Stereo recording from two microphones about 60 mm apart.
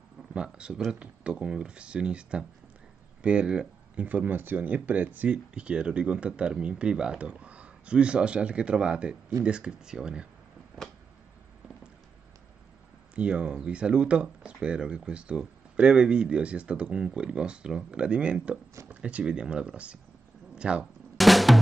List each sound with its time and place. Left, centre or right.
0.3 s speech: centre
13.1 s speech: centre
20.5 s a sound: centre
21.2 s drum: centre